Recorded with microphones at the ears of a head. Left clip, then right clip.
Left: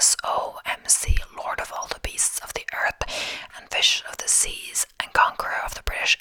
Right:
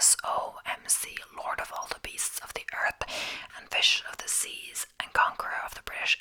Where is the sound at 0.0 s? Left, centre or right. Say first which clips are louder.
Left 5 dB; left.